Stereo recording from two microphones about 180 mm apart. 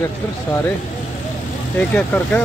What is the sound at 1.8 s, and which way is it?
Speech, 10° left (ahead or behind).